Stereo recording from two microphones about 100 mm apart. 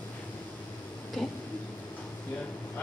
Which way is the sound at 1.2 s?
5° left (ahead or behind).